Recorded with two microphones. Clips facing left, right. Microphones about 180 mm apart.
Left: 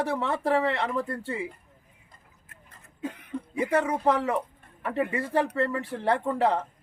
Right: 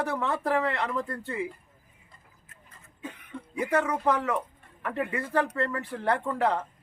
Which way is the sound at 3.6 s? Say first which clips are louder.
Left 1 dB; 30° left (ahead or behind).